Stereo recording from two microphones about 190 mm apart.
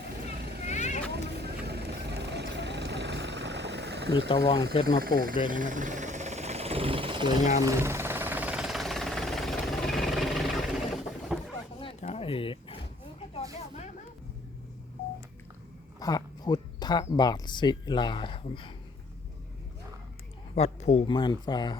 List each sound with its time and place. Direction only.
0.7 s vehicle: 40° left (ahead or behind)
1.1 s vehicle: 60° right (ahead or behind)
4.3 s speech: 25° left (ahead or behind)
5.0 s speech: 50° right (ahead or behind)
5.5 s vehicle: 45° right (ahead or behind); by 7.3 s 25° right (ahead or behind)
7.6 s a sound: 15° right (ahead or behind)
11.8 s roaring cats: 30° left (ahead or behind)
16.0 s speech: 20° left (ahead or behind)
20.6 s speech: 35° left (ahead or behind)
21.2 s speech: 25° left (ahead or behind)